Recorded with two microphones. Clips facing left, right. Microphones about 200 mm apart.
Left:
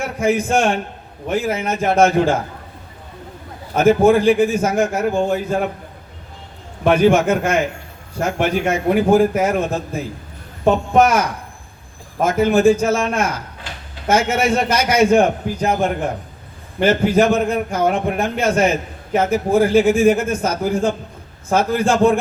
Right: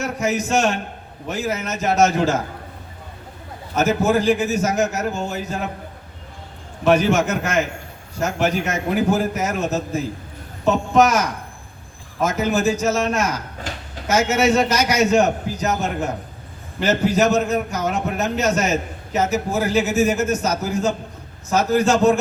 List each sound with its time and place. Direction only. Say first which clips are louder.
0.0 s a man's voice: left 4 dB; 55° left (ahead or behind)
3.8 s a man's voice: left 6 dB; 55° left (ahead or behind)
6.8 s a man's voice: left 3 dB; 50° left (ahead or behind)
13.7 s a sound: right 6 dB; 45° right (ahead or behind)
14.1 s a man's voice: left 1 dB; 55° left (ahead or behind)